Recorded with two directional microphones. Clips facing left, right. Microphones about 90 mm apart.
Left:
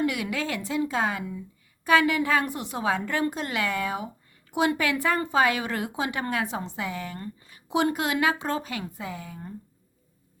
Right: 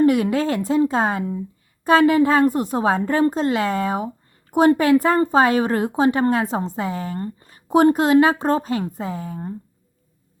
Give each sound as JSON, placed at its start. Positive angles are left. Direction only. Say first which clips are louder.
{"t": 0.0, "sound": "speech", "louder": "right 11 dB", "side_deg": -40}